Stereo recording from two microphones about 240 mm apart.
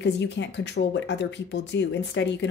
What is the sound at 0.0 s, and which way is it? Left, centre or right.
A woman's voice, left.